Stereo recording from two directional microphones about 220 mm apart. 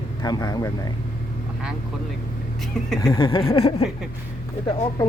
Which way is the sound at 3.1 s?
25° left (ahead or behind).